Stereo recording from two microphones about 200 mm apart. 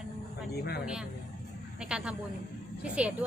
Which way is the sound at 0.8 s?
5° right (ahead or behind).